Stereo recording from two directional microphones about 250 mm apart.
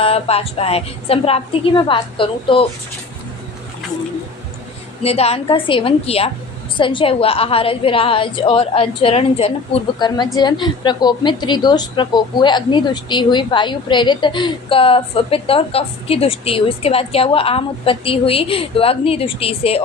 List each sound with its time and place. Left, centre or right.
0.0 s a woman's voice: left
5.0 s a woman's voice: left